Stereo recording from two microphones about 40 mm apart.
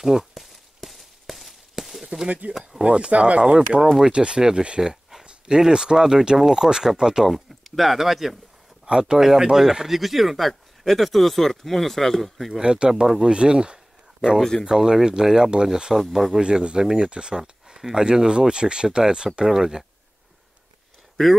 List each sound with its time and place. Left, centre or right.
0.0 s a sound: centre
2.4 s speech: right
2.8 s speech: right
7.2 s speech: centre
8.8 s speech: centre
12.5 s speech: right
15.9 s speech: centre
16.3 s speech: right